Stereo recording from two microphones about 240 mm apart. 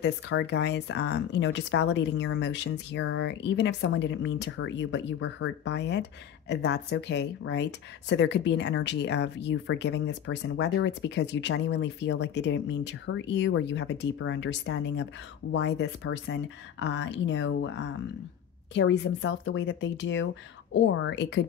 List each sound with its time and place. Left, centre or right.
0.0 s speech: left